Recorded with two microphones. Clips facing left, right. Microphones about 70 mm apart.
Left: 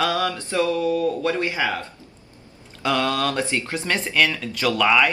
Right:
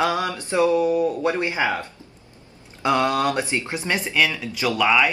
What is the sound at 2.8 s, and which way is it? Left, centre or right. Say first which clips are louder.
Speech: right 2 dB; right.